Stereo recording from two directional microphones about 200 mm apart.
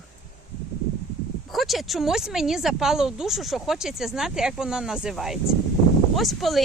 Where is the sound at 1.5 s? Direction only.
Centre (ahead or behind).